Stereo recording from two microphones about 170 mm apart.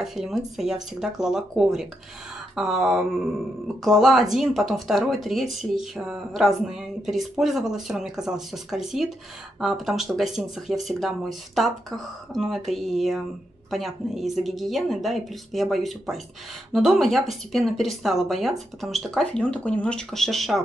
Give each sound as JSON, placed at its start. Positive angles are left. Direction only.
{"t": 0.0, "sound": "speech", "side_deg": 0}